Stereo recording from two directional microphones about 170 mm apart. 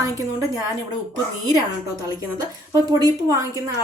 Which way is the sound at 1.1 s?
20° right (ahead or behind).